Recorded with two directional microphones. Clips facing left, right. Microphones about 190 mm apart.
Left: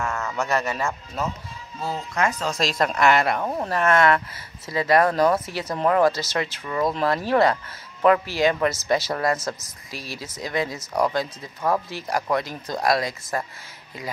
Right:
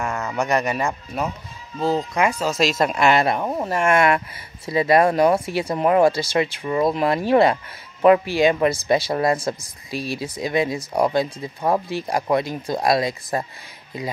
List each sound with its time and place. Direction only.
0.0 s speech: 15° right (ahead or behind)
2.8 s speech: 15° right (ahead or behind)
10.8 s speech: 30° right (ahead or behind)